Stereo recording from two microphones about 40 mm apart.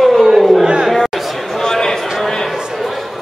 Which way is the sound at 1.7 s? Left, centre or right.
Centre.